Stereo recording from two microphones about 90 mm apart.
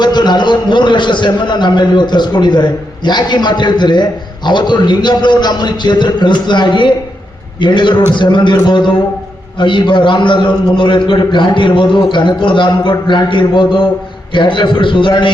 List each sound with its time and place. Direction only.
0.0 s a man's voice: 55° left (ahead or behind)